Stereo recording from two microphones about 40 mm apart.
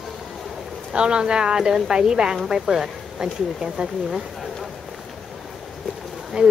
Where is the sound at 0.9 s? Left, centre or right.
Right.